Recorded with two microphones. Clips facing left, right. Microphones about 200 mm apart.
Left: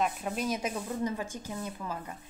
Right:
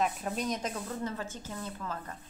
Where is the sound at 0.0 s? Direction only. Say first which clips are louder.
Left 1 dB; centre (ahead or behind).